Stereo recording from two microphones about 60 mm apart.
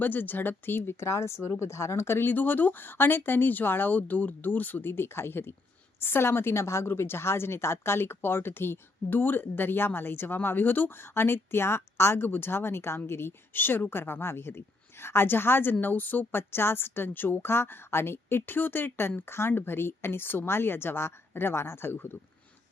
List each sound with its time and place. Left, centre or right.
0.0 s speech: left
2.3 s a woman's voice: left